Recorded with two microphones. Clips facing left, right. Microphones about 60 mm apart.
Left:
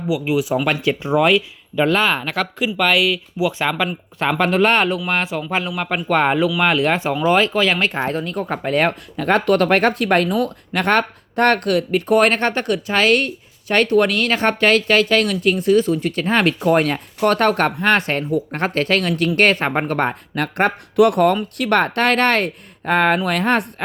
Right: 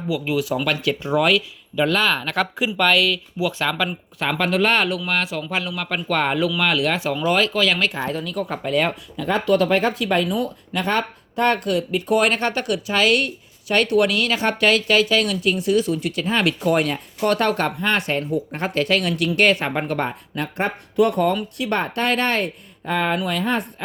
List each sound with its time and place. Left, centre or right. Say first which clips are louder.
0.1 s speech: left 3 dB; centre
2.3 s speech: left 1 dB; centre
2.8 s speech: left 1 dB; centre
4.2 s speech: left 4 dB; left
5.0 s speech: left 2 dB; left